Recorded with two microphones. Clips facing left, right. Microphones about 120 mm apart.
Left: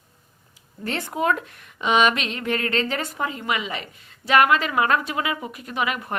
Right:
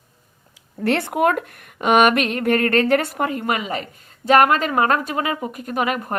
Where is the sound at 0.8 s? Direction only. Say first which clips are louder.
Right 7 dB; 65° right (ahead or behind).